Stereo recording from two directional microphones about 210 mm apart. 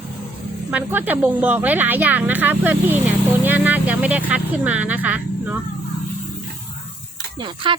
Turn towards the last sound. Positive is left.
turn(degrees=-25)  # may be behind; listen again after turning